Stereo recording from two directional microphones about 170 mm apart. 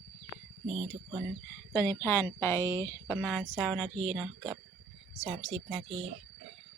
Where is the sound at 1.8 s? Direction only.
15° left (ahead or behind).